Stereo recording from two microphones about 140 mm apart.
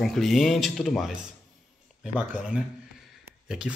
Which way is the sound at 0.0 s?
Centre (ahead or behind).